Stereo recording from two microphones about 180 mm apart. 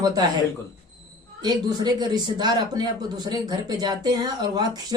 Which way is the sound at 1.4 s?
20° right (ahead or behind).